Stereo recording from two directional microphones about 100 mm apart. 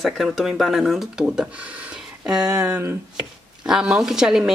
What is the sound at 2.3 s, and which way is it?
Speech, 35° right (ahead or behind).